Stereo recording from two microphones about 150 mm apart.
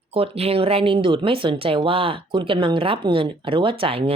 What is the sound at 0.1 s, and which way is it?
Speech, 40° right (ahead or behind).